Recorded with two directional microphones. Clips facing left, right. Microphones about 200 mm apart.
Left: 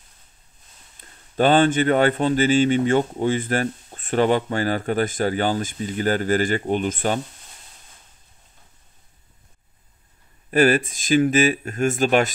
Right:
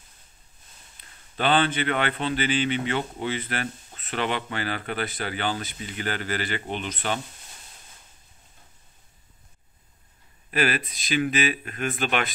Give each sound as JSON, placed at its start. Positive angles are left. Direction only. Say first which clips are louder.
{"t": 1.0, "sound": "a sound", "louder": "left 5 dB", "side_deg": 45}
{"t": 1.3, "sound": "speech", "louder": "left 7 dB", "side_deg": 45}
{"t": 10.5, "sound": "speech", "louder": "left 9 dB", "side_deg": 45}